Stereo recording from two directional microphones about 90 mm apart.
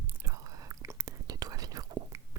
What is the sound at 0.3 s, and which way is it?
Whispering, 40° right (ahead or behind).